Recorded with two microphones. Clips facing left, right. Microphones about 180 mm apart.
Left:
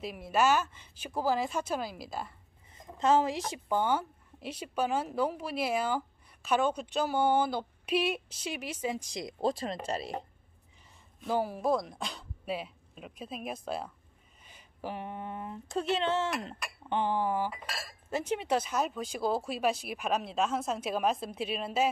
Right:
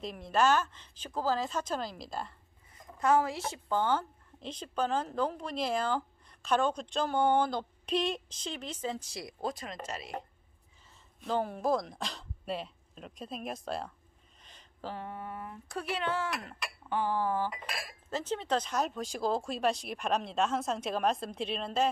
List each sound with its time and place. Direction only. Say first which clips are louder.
0.0 s speech: even; 5° left (ahead or behind)
2.7 s speech: left 1 dB; 20° left (ahead or behind)
9.4 s a sound: left 6 dB; 30° left (ahead or behind)
9.8 s a woman's voice: left 5 dB; 30° left (ahead or behind)
11.1 s speech: left 1 dB; 5° left (ahead or behind)
14.4 s a sound: left 2 dB; 10° left (ahead or behind)
18.1 s speech: left 2 dB; 15° left (ahead or behind)